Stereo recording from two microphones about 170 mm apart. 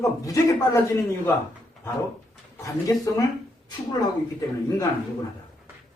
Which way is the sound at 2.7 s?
20° left (ahead or behind).